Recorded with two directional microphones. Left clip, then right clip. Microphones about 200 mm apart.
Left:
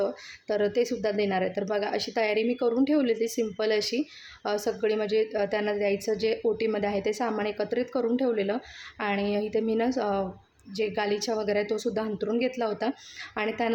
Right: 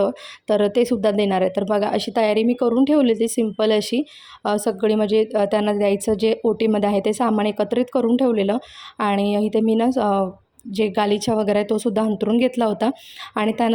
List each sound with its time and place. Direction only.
0.0 s a woman's voice: 40° right (ahead or behind)